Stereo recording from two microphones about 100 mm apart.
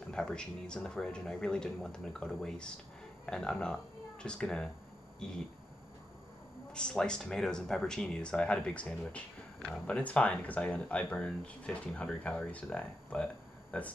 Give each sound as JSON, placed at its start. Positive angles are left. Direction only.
{"t": 0.1, "sound": "speech", "side_deg": 10}
{"t": 6.7, "sound": "speech", "side_deg": 10}